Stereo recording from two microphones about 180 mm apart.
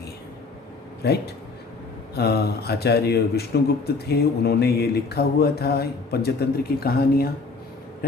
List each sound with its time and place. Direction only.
1.0 s speech: 65° left (ahead or behind)